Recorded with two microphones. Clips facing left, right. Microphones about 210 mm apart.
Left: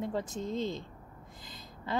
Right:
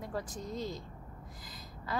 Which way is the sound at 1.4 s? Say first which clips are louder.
Left 4 dB; 25° left (ahead or behind).